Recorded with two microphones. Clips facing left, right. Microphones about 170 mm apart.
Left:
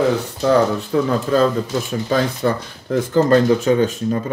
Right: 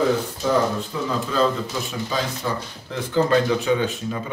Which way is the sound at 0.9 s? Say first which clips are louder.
Left 9 dB; 65° left (ahead or behind).